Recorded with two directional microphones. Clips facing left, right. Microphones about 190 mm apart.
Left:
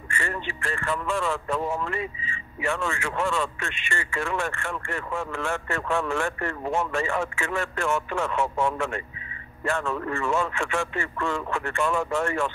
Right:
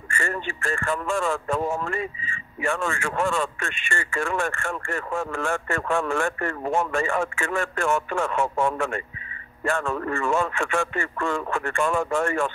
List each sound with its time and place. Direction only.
0.1 s speech: 45° right (ahead or behind)